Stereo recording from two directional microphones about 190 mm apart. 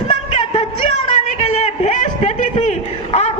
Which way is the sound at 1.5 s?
35° left (ahead or behind).